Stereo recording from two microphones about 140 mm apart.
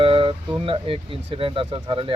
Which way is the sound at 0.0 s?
40° right (ahead or behind).